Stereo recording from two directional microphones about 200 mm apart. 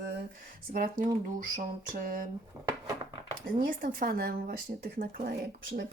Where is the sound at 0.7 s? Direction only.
45° right (ahead or behind).